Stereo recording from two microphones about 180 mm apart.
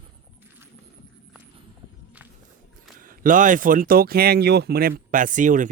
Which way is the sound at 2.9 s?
50° right (ahead or behind).